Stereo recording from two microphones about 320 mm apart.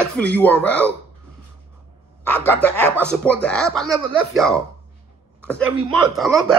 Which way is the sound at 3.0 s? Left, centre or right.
Centre.